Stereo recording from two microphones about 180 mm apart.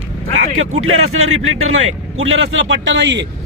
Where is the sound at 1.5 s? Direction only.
90° right.